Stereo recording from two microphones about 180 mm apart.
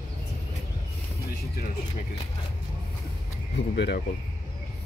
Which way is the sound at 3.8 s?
65° left (ahead or behind).